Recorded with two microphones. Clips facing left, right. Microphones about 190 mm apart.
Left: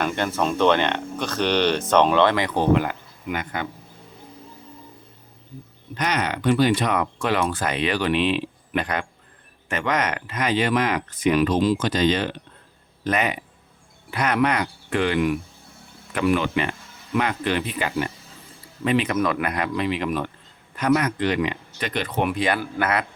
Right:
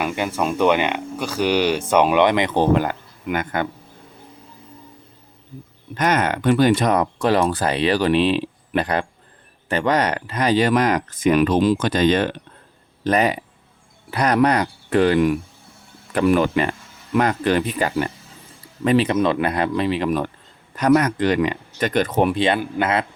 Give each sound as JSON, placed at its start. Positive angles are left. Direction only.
{"t": 0.0, "sound": "speech", "side_deg": -10}
{"t": 2.6, "sound": "speech", "side_deg": -35}
{"t": 3.2, "sound": "a man's voice", "side_deg": -55}
{"t": 6.0, "sound": "speech", "side_deg": -50}
{"t": 13.1, "sound": "speech", "side_deg": -35}